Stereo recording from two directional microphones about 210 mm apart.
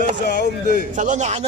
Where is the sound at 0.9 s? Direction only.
35° right (ahead or behind).